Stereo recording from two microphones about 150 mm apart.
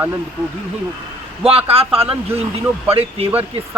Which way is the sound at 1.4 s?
40° right (ahead or behind).